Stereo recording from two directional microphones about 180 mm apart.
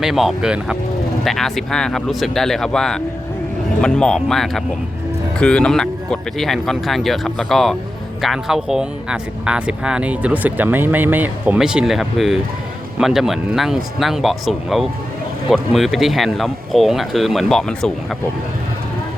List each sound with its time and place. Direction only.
0.0 s speech: centre (ahead or behind)